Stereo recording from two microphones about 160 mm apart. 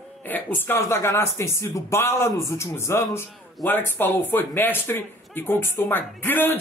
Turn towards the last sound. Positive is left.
turn(degrees=10)  # may be behind; listen again after turning